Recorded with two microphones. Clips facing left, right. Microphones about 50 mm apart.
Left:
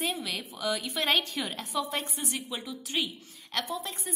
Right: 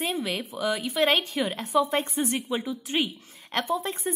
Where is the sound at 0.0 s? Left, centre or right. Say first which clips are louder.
Right 4 dB; centre.